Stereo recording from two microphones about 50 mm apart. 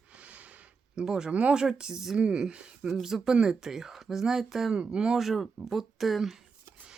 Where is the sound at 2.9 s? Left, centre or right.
Centre.